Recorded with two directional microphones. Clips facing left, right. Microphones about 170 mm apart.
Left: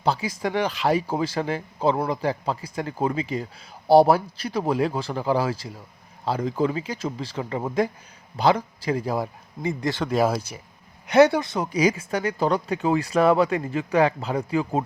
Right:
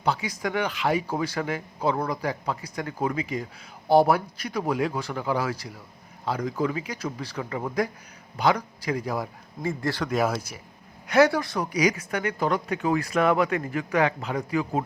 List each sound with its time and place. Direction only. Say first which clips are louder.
0.0 s speech: left 3 dB; 30° left (ahead or behind)